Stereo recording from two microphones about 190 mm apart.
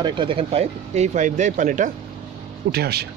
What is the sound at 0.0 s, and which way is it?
Speech, 25° right (ahead or behind).